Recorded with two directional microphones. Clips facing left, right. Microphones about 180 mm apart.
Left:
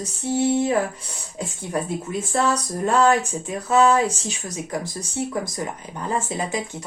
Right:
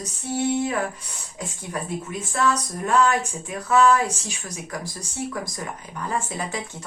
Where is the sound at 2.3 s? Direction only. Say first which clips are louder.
Left 1 dB; 30° left (ahead or behind).